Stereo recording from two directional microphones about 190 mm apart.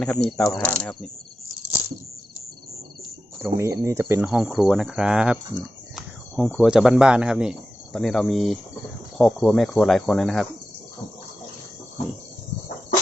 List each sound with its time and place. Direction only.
0.0 s speech: 5° left (ahead or behind)
3.4 s speech: 15° right (ahead or behind)
4.3 s speech: 5° right (ahead or behind)